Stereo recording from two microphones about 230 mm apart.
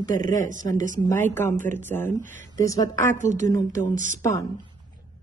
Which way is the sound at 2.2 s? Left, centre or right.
Right.